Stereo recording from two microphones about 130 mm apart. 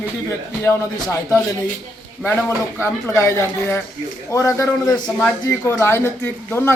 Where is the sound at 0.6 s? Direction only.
20° left (ahead or behind).